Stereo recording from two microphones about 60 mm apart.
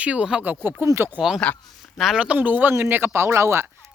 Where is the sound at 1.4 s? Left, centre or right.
Centre.